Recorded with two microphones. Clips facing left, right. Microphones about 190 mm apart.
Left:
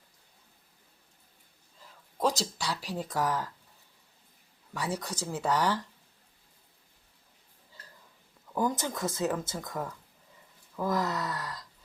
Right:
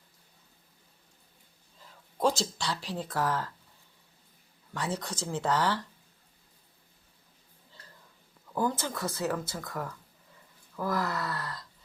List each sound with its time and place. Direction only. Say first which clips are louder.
2.4 s speech: right 1 dB; 10° left (ahead or behind)
4.7 s speech: even; 10° left (ahead or behind)
8.5 s speech: even; 15° left (ahead or behind)